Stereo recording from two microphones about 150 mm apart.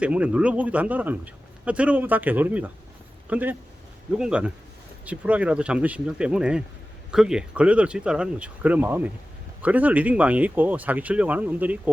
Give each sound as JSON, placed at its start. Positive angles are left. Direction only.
{"t": 0.0, "sound": "a man's voice", "side_deg": -10}